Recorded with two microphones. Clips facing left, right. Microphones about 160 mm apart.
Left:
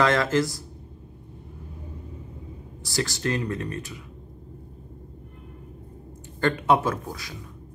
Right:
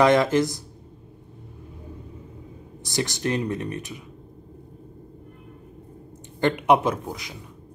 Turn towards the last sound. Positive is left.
turn(degrees=-20)  # may be behind; listen again after turning